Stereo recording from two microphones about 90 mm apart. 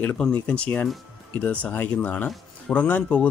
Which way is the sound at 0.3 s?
15° left (ahead or behind).